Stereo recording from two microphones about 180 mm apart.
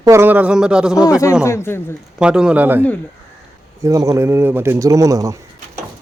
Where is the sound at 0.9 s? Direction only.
20° left (ahead or behind).